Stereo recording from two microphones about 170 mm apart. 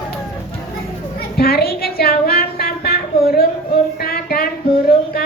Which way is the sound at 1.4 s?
65° left (ahead or behind).